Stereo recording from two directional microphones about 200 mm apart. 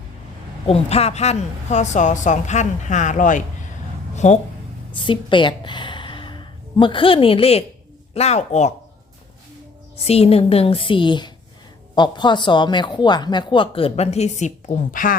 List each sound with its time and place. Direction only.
0.7 s a woman's voice: 30° left (ahead or behind)
4.1 s a sound: 35° left (ahead or behind)
4.9 s a woman's voice: 25° left (ahead or behind)
10.1 s a woman's voice: 30° left (ahead or behind)